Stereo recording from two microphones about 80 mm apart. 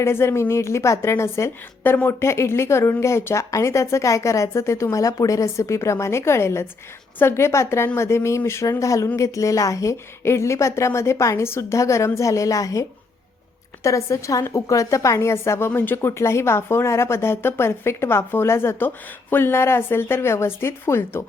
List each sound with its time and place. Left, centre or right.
0.0 s speech: left
13.8 s speech: left